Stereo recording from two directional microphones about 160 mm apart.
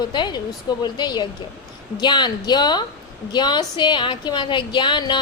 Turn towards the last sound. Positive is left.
turn(degrees=30)  # may be behind; listen again after turning